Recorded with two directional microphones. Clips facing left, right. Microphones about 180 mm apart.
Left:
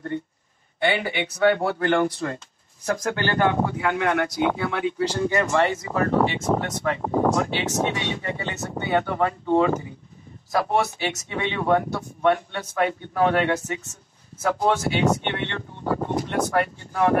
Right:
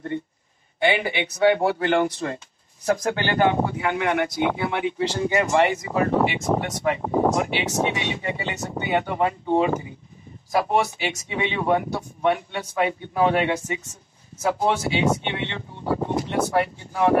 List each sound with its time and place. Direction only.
0.8 s speech: 15° right (ahead or behind)